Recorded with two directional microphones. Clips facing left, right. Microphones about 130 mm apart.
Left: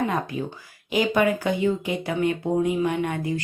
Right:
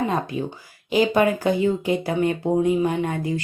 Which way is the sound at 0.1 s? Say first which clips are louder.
Right 2 dB; 25° right (ahead or behind).